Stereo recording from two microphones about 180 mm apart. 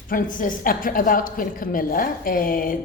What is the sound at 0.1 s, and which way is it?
A woman's voice, 50° left (ahead or behind).